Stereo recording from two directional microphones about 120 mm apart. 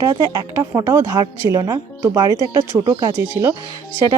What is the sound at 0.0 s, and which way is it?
A woman's voice, 30° right (ahead or behind).